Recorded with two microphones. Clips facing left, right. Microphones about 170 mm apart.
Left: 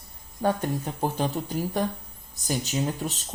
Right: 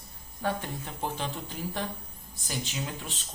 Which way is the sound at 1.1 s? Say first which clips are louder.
Left 8 dB; 40° left (ahead or behind).